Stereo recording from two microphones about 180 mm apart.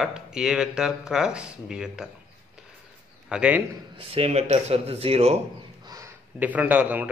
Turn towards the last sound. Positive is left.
turn(degrees=-10)  # may be behind; listen again after turning